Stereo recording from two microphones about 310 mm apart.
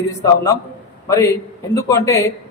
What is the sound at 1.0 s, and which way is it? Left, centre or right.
A man's voice, centre.